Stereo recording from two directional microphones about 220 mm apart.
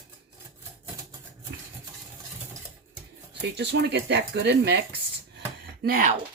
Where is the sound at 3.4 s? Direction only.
50° right (ahead or behind).